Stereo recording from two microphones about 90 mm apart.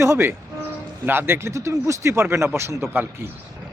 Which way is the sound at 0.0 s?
30° right (ahead or behind).